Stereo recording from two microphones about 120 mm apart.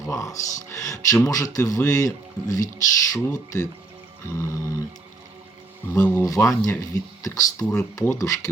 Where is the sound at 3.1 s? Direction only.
30° left (ahead or behind).